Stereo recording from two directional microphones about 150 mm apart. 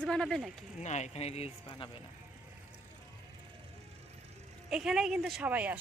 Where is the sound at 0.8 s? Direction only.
50° left (ahead or behind).